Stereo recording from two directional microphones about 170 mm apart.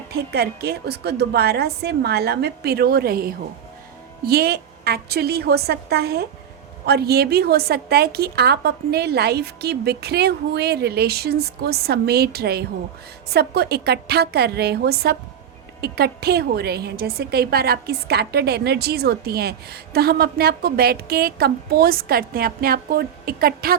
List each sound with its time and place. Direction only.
0.1 s a woman's voice: 70° right (ahead or behind)